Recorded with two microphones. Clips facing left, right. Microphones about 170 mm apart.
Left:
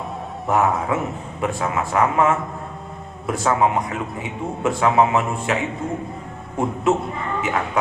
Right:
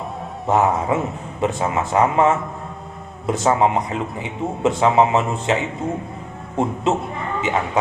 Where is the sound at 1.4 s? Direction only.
25° right (ahead or behind).